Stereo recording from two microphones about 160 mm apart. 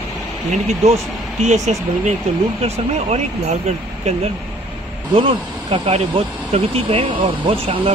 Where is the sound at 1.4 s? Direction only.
45° right (ahead or behind).